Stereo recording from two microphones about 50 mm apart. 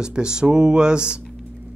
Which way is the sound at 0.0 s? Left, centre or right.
Centre.